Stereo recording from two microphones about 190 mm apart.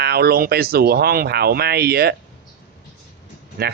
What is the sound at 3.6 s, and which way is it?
Speech, 55° right (ahead or behind).